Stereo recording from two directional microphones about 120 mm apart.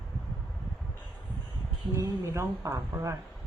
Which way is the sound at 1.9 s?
25° right (ahead or behind).